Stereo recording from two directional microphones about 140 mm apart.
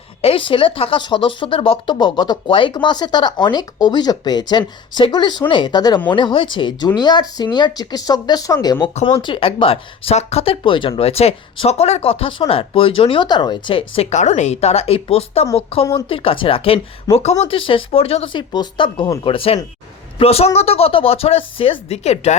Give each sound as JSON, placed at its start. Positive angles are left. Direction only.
{"t": 0.2, "sound": "speech", "side_deg": 40}
{"t": 9.0, "sound": "speech", "side_deg": 35}